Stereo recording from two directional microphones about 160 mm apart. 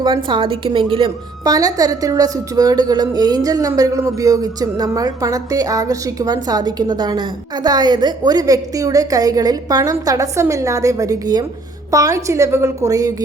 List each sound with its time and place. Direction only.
0.0 s a woman's voice: 30° right (ahead or behind)